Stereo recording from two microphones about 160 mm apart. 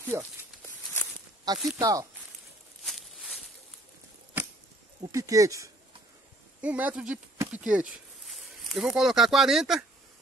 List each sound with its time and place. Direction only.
0.0 s speech: 10° right (ahead or behind)
1.5 s speech: 25° right (ahead or behind)
2.8 s a sound: centre (ahead or behind)
5.1 s speech: 20° right (ahead or behind)
6.6 s speech: 10° right (ahead or behind)